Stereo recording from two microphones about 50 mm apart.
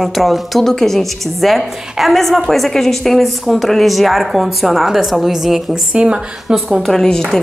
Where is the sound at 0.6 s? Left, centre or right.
Centre.